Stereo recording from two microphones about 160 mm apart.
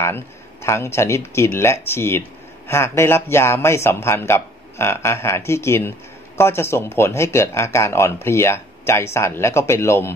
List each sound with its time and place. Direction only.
0.0 s speech: 15° left (ahead or behind)